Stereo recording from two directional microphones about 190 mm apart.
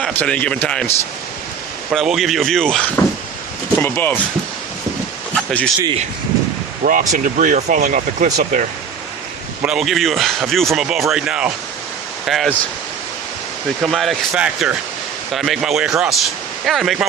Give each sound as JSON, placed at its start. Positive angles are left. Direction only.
{"t": 0.0, "sound": "a man's voice", "side_deg": 5}
{"t": 1.9, "sound": "a man's voice", "side_deg": 0}
{"t": 5.3, "sound": "a sound", "side_deg": 5}
{"t": 7.1, "sound": "speech", "side_deg": -40}
{"t": 9.6, "sound": "a man's voice", "side_deg": -5}
{"t": 13.8, "sound": "a man's voice", "side_deg": 0}